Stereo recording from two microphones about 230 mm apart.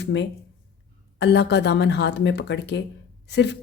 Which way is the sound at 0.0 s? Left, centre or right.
Left.